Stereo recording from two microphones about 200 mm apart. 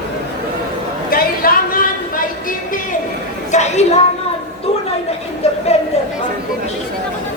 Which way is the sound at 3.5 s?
35° left (ahead or behind).